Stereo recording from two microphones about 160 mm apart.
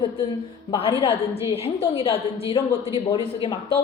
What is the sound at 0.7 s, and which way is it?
A woman's voice, 35° left (ahead or behind).